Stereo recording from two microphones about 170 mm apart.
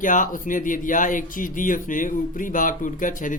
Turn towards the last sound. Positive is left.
turn(degrees=50)  # may be behind; listen again after turning